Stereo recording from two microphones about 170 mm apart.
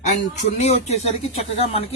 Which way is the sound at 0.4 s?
40° left (ahead or behind).